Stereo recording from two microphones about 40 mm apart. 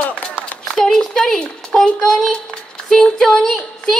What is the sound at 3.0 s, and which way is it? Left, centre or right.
Speech, centre.